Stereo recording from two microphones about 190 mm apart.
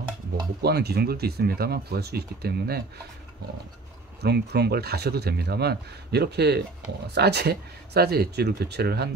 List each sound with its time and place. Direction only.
0.6 s speech: 60° right (ahead or behind)
4.2 s speech: 60° right (ahead or behind)